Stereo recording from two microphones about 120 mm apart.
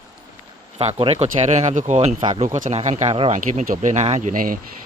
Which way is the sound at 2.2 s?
60° right (ahead or behind).